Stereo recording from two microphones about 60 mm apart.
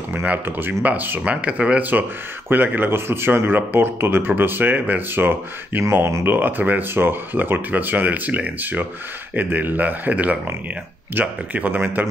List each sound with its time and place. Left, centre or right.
0.5 s speech: right
1.2 s speech: right
2.5 s speech: right